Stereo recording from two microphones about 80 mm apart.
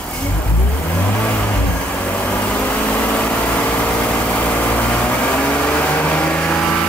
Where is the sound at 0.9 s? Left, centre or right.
Centre.